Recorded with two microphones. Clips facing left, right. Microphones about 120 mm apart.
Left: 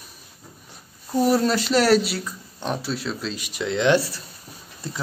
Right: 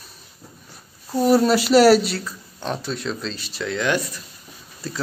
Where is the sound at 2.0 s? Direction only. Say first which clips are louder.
Right 1 dB; 15° left (ahead or behind); by 4.2 s 30° left (ahead or behind).